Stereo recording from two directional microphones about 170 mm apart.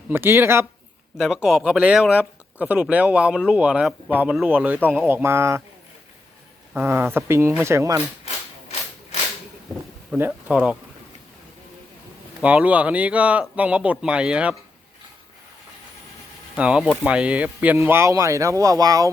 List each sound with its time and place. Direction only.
0.1 s speech: 15° right (ahead or behind)
1.2 s speech: 5° right (ahead or behind)
6.7 s speech: 15° right (ahead or behind)
10.1 s speech: 10° right (ahead or behind)
12.4 s speech: 5° right (ahead or behind)
16.6 s speech: 5° right (ahead or behind)